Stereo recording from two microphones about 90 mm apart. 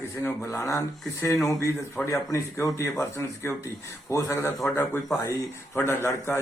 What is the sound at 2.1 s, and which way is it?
Speech, 35° left (ahead or behind).